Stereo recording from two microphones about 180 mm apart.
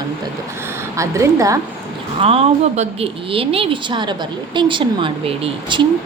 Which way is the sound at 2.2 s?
30° right (ahead or behind).